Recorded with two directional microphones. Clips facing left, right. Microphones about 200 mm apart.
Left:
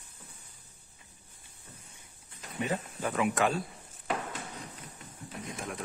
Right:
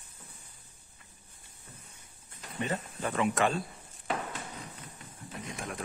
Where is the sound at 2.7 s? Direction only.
5° left (ahead or behind).